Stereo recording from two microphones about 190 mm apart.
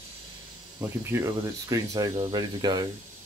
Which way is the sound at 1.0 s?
15° right (ahead or behind).